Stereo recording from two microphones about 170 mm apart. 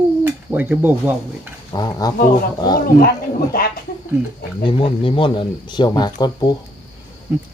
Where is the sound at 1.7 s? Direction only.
20° left (ahead or behind).